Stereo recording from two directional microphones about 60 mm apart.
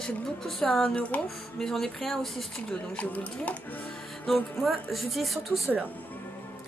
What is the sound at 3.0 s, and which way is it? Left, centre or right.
Speech, left.